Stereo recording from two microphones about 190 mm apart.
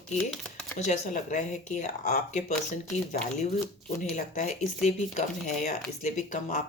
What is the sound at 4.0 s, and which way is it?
Speech, 40° left (ahead or behind).